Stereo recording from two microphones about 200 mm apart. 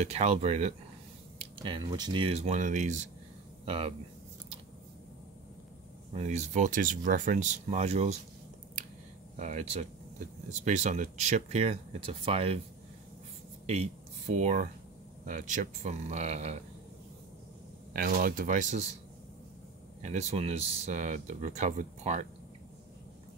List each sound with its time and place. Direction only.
0.0 s speech: 30° right (ahead or behind)
6.1 s speech: 35° right (ahead or behind)
9.4 s speech: 35° right (ahead or behind)
13.7 s speech: 35° right (ahead or behind)
17.9 s speech: 45° right (ahead or behind)
20.0 s speech: 35° right (ahead or behind)